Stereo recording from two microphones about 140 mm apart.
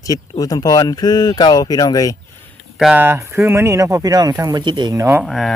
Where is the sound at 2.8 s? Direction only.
10° right (ahead or behind).